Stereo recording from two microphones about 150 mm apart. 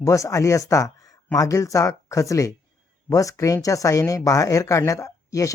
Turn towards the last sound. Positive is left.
turn(degrees=20)  # may be behind; listen again after turning